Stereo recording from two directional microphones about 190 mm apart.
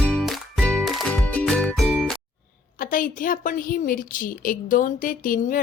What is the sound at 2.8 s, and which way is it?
A woman's voice, 45° left (ahead or behind).